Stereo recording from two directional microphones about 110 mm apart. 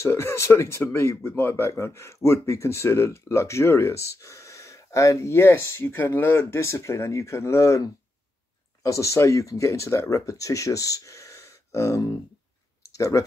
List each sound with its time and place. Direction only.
0.0 s speech: 25° left (ahead or behind)
12.8 s clicking: 30° left (ahead or behind)